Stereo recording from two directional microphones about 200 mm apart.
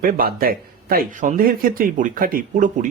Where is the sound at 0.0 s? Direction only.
45° right (ahead or behind).